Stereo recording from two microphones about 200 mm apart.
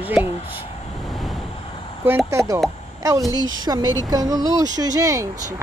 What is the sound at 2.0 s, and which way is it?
Speech, 10° right (ahead or behind).